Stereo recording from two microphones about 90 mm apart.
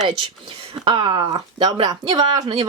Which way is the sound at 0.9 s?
65° right (ahead or behind).